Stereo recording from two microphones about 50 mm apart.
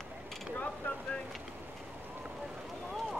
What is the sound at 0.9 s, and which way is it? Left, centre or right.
Boat, left.